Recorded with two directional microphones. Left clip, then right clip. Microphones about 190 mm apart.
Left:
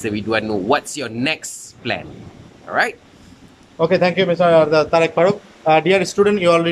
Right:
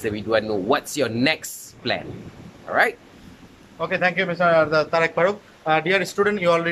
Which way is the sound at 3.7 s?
30° left (ahead or behind).